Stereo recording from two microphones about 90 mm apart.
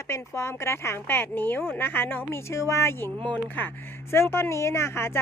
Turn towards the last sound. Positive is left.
turn(degrees=30)  # may be behind; listen again after turning